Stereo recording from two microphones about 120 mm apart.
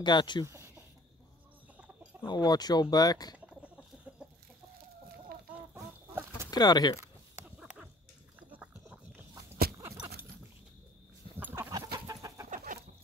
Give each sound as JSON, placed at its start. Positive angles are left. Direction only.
{"t": 0.0, "sound": "speech", "side_deg": 40}
{"t": 0.5, "sound": "a sound", "side_deg": -20}
{"t": 2.2, "sound": "speech", "side_deg": 35}
{"t": 3.3, "sound": "chicken", "side_deg": -10}
{"t": 5.8, "sound": "chicken", "side_deg": -25}
{"t": 6.5, "sound": "speech", "side_deg": 35}
{"t": 7.4, "sound": "dog", "side_deg": -10}
{"t": 8.4, "sound": "a sound", "side_deg": -15}
{"t": 9.3, "sound": "a sound", "side_deg": -30}
{"t": 11.3, "sound": "a sound", "side_deg": -15}
{"t": 11.7, "sound": "chicken", "side_deg": -30}
{"t": 12.4, "sound": "chicken", "side_deg": -90}